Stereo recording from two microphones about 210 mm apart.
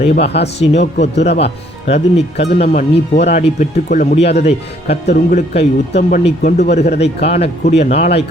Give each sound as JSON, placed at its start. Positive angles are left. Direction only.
{"t": 0.2, "sound": "speech", "side_deg": 50}
{"t": 1.0, "sound": "speech", "side_deg": 30}